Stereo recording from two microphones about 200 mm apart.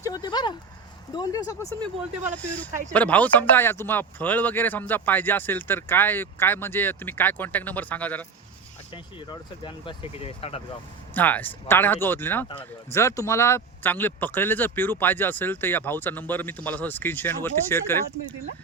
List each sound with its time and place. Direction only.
0.0 s a sound: 20° left (ahead or behind)
1.1 s speech: 20° left (ahead or behind)
2.9 s speech: 5° left (ahead or behind)
8.9 s speech: 25° left (ahead or behind)
11.1 s speech: 10° left (ahead or behind)